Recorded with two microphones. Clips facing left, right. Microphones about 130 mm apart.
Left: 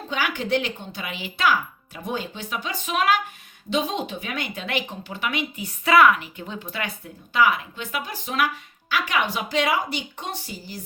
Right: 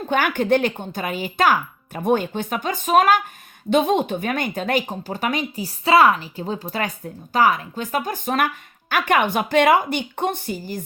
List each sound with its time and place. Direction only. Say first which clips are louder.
0.1 s speech: right 6 dB; 50° right (ahead or behind)